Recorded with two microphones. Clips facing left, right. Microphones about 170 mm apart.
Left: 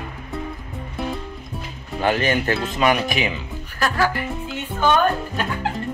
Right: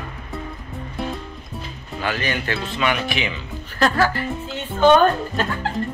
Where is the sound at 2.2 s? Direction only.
45° left (ahead or behind).